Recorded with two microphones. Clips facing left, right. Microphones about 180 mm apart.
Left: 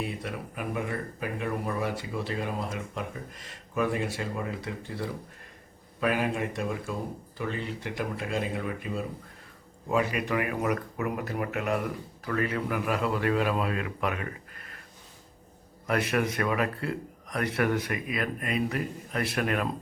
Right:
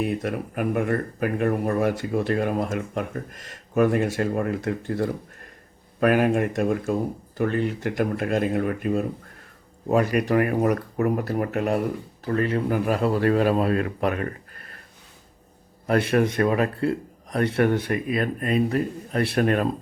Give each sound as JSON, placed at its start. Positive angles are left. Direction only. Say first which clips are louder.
{"t": 0.0, "sound": "speech", "louder": "right 8 dB", "side_deg": -50}
{"t": 12.2, "sound": "a man's voice", "louder": "right 6 dB", "side_deg": -25}
{"t": 15.9, "sound": "a man's voice", "louder": "right 6 dB", "side_deg": -30}